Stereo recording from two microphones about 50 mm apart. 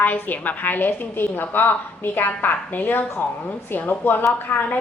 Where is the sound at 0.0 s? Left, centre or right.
Left.